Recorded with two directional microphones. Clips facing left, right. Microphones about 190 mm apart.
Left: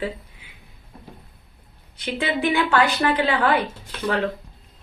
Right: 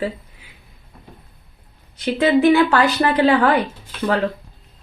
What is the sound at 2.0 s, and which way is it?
A woman's voice, 40° right (ahead or behind).